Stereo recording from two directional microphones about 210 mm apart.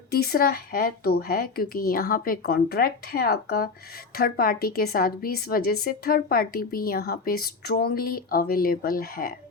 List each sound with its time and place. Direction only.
0.1 s a woman's voice: 45° left (ahead or behind)